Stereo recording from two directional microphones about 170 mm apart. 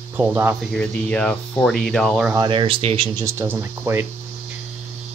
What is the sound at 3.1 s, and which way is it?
Speech, 15° right (ahead or behind).